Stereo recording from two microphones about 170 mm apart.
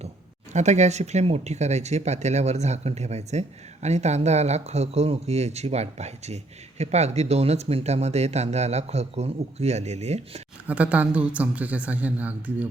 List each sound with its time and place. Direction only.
0.5 s speech: 40° right (ahead or behind)
10.7 s a woman's voice: 10° right (ahead or behind)